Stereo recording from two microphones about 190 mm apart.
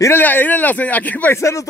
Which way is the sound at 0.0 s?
10° left (ahead or behind).